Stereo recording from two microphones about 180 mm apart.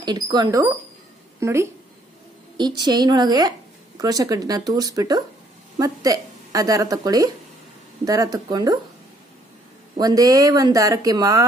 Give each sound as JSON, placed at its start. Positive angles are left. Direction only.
{"t": 0.0, "sound": "a woman's voice", "side_deg": -20}
{"t": 9.9, "sound": "a woman's voice", "side_deg": -20}